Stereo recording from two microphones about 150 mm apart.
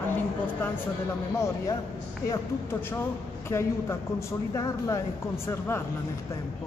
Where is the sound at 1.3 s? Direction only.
20° left (ahead or behind).